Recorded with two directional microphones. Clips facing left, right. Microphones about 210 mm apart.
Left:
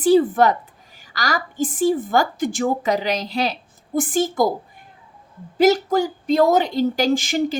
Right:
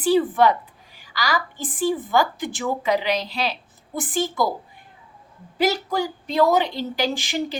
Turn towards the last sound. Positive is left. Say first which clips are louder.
# left 6 dB
turn(degrees=45)  # may be behind; listen again after turning